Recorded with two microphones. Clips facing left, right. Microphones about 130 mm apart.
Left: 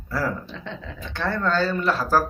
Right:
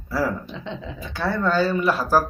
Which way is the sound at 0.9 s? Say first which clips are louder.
Right 2 dB; 5° right (ahead or behind).